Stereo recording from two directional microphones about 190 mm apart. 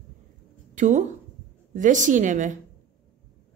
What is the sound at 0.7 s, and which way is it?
A woman's voice, 40° right (ahead or behind).